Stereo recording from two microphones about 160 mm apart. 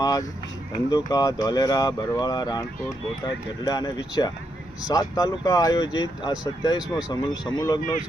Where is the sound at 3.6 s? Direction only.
25° left (ahead or behind).